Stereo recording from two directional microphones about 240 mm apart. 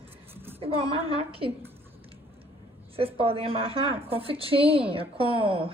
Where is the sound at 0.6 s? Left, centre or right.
Right.